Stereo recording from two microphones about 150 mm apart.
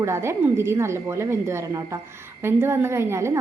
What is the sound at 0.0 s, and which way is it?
A woman's voice, 20° right (ahead or behind).